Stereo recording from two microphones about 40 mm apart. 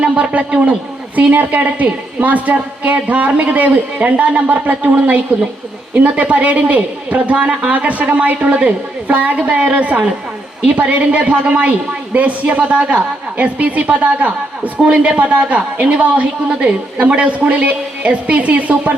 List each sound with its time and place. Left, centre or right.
0.0 s a man's voice: right